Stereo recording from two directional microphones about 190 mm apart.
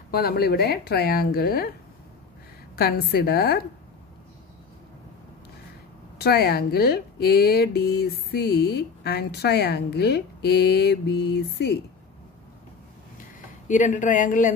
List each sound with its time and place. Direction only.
0.1 s speech: 55° left (ahead or behind)
2.7 s speech: 55° left (ahead or behind)
6.1 s speech: 55° left (ahead or behind)
13.7 s speech: 40° left (ahead or behind)